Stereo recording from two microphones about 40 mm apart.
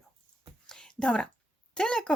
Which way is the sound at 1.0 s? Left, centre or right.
Left.